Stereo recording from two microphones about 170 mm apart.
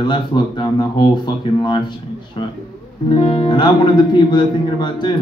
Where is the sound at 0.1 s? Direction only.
25° left (ahead or behind).